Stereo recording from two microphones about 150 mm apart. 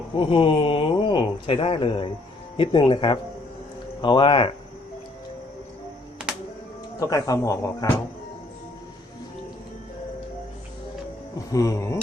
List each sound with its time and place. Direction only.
0.2 s speech: 35° left (ahead or behind)
7.0 s speech: 25° left (ahead or behind)
11.3 s speech: 20° left (ahead or behind)